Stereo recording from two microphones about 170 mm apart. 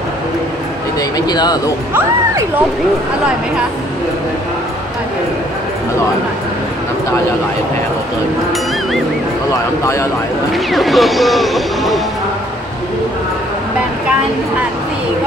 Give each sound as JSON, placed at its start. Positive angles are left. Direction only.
{"t": 1.1, "sound": "speech", "side_deg": 25}
{"t": 10.5, "sound": "speech", "side_deg": 0}